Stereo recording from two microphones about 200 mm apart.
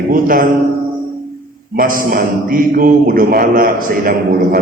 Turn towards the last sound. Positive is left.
turn(degrees=-45)  # may be behind; listen again after turning